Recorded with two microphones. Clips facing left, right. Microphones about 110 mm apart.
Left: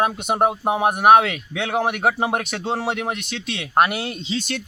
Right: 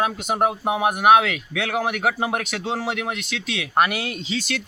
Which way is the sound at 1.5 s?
25° left (ahead or behind).